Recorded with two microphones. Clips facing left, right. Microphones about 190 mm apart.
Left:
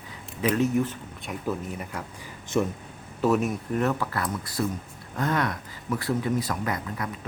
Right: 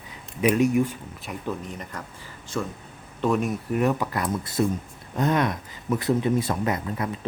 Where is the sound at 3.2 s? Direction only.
Centre (ahead or behind).